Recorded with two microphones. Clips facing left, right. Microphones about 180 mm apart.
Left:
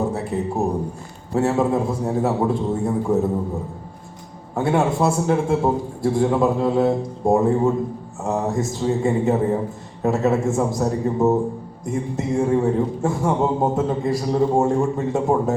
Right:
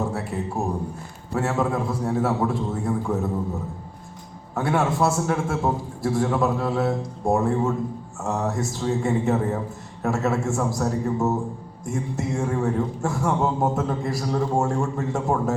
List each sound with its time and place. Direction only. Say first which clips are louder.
0.3 s a man's voice: left 5 dB; 25° left (ahead or behind)
4.5 s a man's voice: left 3 dB; 20° left (ahead or behind)